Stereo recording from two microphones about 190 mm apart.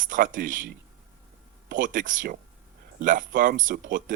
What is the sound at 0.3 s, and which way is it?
Speech, 45° right (ahead or behind).